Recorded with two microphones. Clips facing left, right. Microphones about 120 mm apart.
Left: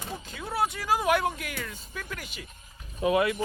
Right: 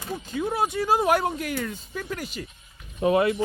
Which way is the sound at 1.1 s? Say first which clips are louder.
Right 3 dB; 40° right (ahead or behind).